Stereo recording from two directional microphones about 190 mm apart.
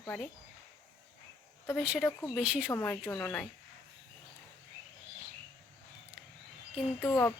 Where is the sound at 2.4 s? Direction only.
5° right (ahead or behind).